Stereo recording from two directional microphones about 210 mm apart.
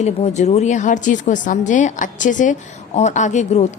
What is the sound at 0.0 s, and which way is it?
A woman's voice, 30° left (ahead or behind).